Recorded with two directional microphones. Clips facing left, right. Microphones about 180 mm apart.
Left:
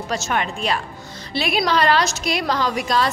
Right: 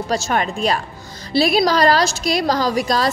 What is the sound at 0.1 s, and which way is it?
A woman's voice, 35° right (ahead or behind).